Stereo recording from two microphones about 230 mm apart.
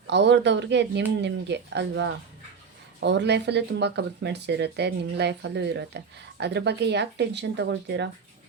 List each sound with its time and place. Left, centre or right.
0.1 s speech: right